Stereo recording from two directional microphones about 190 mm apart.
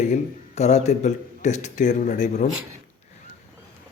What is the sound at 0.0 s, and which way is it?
A man's voice, 35° left (ahead or behind).